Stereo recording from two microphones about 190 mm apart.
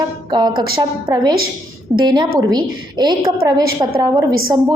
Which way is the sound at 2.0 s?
25° right (ahead or behind).